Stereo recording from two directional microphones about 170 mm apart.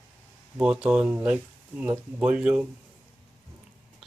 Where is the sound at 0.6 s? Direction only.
5° right (ahead or behind).